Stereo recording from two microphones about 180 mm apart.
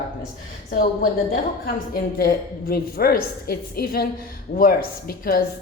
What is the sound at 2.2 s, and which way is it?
A man's voice, 55° left (ahead or behind).